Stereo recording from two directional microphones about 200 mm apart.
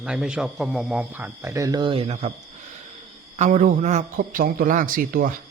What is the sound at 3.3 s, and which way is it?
Speech, 35° right (ahead or behind).